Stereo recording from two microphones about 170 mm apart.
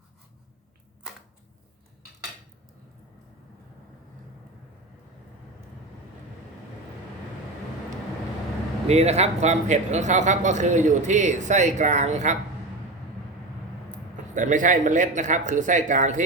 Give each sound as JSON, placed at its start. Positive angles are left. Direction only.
{"t": 8.9, "sound": "speech", "side_deg": -40}
{"t": 14.3, "sound": "speech", "side_deg": -50}